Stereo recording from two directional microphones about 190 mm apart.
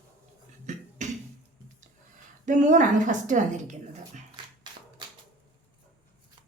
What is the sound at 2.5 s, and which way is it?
A woman's voice, 40° right (ahead or behind).